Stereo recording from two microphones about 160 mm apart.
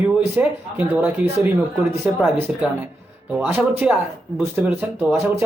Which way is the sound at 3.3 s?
10° right (ahead or behind).